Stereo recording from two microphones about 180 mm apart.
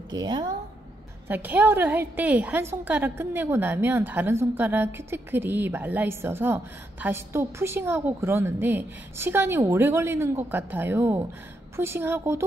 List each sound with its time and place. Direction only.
0.1 s a woman's voice: 25° right (ahead or behind)
1.3 s a woman's voice: 10° right (ahead or behind)